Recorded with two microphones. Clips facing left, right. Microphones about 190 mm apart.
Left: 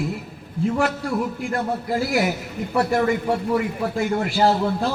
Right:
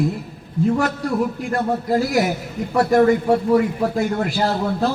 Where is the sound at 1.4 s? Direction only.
40° right (ahead or behind).